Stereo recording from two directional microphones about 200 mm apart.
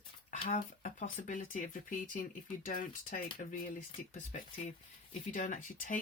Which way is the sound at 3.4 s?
40° left (ahead or behind).